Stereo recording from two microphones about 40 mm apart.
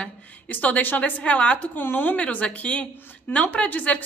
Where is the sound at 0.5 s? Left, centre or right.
Left.